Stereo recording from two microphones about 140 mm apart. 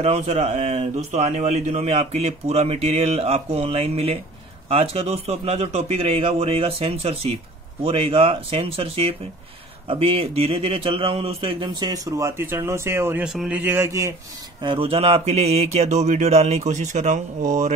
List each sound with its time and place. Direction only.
0.0 s a man's voice: 55° right (ahead or behind); by 13.2 s 15° right (ahead or behind)
13.2 s speech: 5° right (ahead or behind); by 14.1 s 20° right (ahead or behind)
14.6 s speech: 40° right (ahead or behind); by 17.7 s 60° right (ahead or behind)